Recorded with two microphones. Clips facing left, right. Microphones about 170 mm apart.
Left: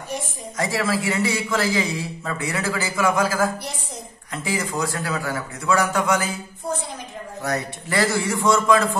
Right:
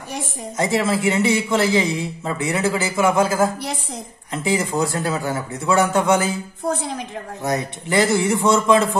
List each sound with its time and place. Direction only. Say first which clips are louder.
0.6 s a man's voice: right 3 dB; 25° right (ahead or behind)
7.4 s a man's voice: right 3 dB; 20° right (ahead or behind)